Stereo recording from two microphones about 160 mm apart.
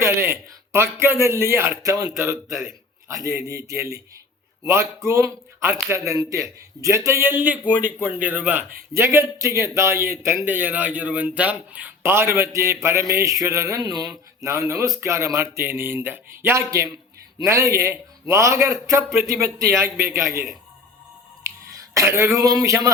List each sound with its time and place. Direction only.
0.0 s speech: 15° right (ahead or behind)
2.5 s a man's voice: 5° right (ahead or behind)
3.1 s a man's voice: 20° right (ahead or behind)
21.4 s throat clearing: 20° right (ahead or behind)
22.1 s a man's voice: 20° right (ahead or behind)